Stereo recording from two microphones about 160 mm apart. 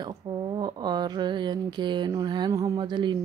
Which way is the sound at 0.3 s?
30° right (ahead or behind).